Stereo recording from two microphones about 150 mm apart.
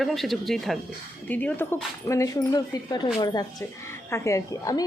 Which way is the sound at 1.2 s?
10° left (ahead or behind).